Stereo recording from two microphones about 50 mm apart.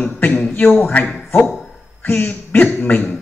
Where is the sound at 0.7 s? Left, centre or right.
Left.